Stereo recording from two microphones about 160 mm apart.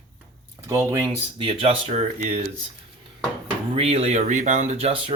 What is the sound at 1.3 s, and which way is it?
Speech, 35° right (ahead or behind).